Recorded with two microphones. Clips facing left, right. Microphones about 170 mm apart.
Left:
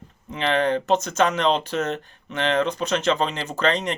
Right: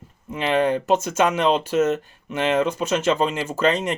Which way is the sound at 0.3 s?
5° right (ahead or behind).